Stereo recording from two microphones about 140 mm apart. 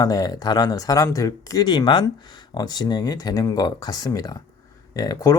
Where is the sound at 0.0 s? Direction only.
25° left (ahead or behind).